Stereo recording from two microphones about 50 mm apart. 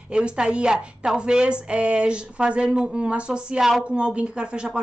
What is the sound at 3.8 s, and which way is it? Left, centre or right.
Speech, right.